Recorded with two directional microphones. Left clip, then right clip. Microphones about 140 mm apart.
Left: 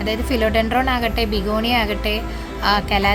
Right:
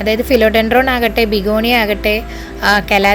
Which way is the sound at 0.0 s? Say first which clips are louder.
Right 9 dB; 35° right (ahead or behind).